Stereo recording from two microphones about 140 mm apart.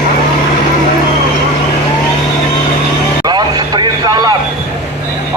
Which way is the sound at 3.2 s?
30° right (ahead or behind).